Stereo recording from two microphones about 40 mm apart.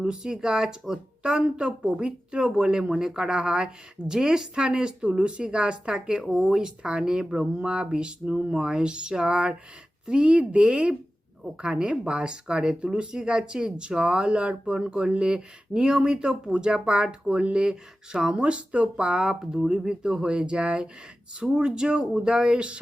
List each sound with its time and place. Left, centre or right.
0.0 s speech: centre